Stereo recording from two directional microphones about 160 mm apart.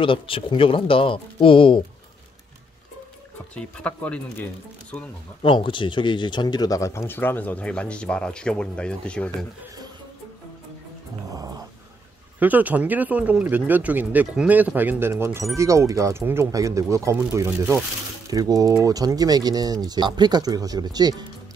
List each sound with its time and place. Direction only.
0.0 s speech: 30° left (ahead or behind)
3.5 s speech: 10° left (ahead or behind)
5.4 s speech: 30° left (ahead or behind); by 9.5 s 5° left (ahead or behind)
11.3 s dog: 20° right (ahead or behind)
12.4 s speech: 10° right (ahead or behind)